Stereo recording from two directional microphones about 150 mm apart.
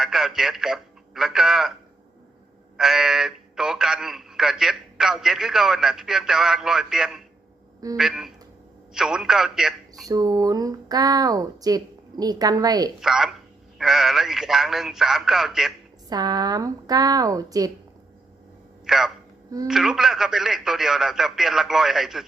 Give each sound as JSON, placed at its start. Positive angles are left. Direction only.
{"t": 0.0, "sound": "a man's voice", "side_deg": -5}
{"t": 2.7, "sound": "a man's voice", "side_deg": -5}
{"t": 10.1, "sound": "speech", "side_deg": -25}
{"t": 13.0, "sound": "a man's voice", "side_deg": -5}
{"t": 16.0, "sound": "speech", "side_deg": -25}
{"t": 18.9, "sound": "a man's voice", "side_deg": 0}